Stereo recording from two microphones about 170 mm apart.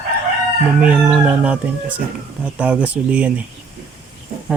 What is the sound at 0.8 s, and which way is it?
Speech, 5° right (ahead or behind).